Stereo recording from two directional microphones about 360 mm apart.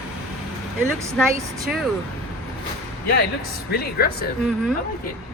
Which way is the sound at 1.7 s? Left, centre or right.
Centre.